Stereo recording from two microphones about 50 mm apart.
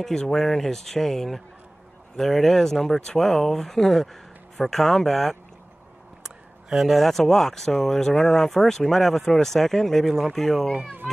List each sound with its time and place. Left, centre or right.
0.0 s speech: centre
6.2 s speech: centre
10.8 s speech: right